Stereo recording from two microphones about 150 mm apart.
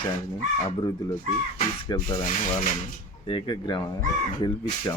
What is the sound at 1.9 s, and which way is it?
Speech, 30° left (ahead or behind).